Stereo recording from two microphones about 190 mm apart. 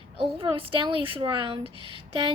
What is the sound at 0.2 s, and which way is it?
A woman's voice, 30° right (ahead or behind).